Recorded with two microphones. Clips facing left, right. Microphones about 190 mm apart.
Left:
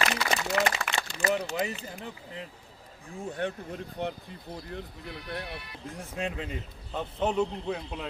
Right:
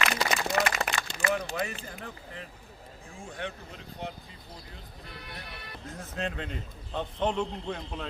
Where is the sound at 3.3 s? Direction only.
50° left (ahead or behind).